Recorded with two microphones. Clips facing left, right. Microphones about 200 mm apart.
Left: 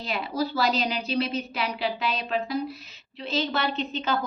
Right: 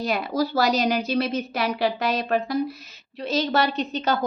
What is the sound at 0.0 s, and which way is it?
A woman's voice, 45° right (ahead or behind).